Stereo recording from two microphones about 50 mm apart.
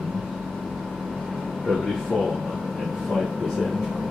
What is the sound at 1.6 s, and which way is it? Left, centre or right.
Speech, centre.